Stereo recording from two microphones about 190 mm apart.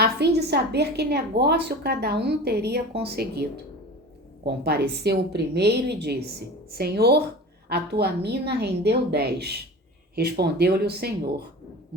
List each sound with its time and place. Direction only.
0.0 s a woman's voice: 60° right (ahead or behind)
4.4 s a woman's voice: 60° right (ahead or behind)